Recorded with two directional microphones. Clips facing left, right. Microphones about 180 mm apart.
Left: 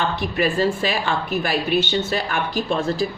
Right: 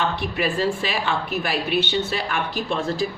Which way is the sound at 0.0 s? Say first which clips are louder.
Left 2 dB; 40° left (ahead or behind).